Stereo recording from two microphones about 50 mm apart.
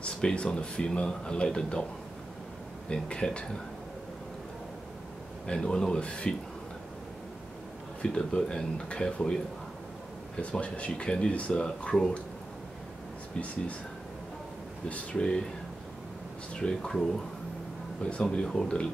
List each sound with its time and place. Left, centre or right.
0.0 s speech: centre
2.9 s speech: centre
5.5 s speech: centre
8.0 s speech: centre
10.4 s speech: left
15.1 s speech: centre
16.5 s speech: centre
18.0 s speech: left